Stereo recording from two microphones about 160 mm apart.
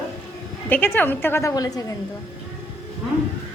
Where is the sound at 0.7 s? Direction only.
10° left (ahead or behind).